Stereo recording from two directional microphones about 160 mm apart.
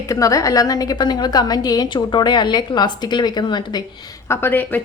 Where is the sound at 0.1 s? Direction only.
20° left (ahead or behind).